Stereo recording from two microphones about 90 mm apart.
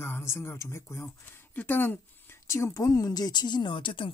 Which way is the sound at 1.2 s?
20° left (ahead or behind).